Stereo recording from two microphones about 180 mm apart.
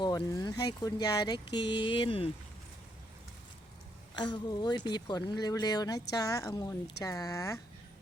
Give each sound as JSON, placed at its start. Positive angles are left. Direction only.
{"t": 0.0, "sound": "speech", "side_deg": 25}
{"t": 4.1, "sound": "speech", "side_deg": 25}